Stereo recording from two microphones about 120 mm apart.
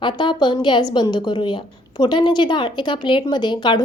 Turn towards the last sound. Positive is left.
turn(degrees=40)  # may be behind; listen again after turning